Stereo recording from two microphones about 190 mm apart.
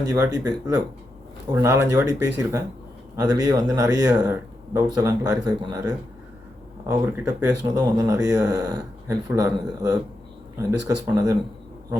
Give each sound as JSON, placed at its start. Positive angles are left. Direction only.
{"t": 0.1, "sound": "speech", "side_deg": -20}
{"t": 4.1, "sound": "speech", "side_deg": -5}
{"t": 4.7, "sound": "speech", "side_deg": -15}
{"t": 6.8, "sound": "speech", "side_deg": -15}